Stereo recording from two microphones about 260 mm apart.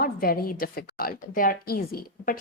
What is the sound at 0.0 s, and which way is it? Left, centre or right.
A woman's voice, left.